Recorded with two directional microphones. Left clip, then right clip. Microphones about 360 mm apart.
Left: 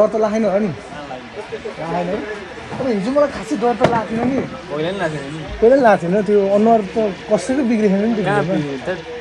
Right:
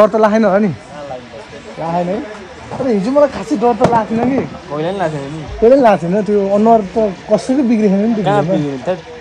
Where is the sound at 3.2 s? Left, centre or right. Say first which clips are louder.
Right 5 dB; centre.